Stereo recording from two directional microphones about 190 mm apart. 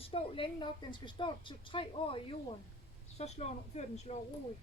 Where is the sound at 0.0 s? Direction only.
30° left (ahead or behind).